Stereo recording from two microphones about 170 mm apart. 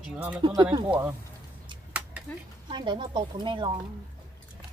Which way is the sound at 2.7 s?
30° right (ahead or behind).